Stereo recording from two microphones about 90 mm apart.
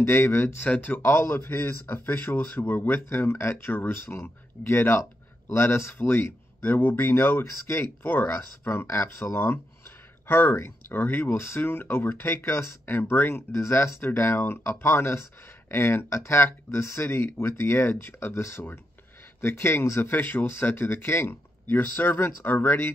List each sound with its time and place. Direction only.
0.0 s speech: 25° left (ahead or behind)